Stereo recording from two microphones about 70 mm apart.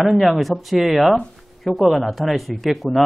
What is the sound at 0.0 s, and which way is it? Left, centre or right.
A man's voice, centre.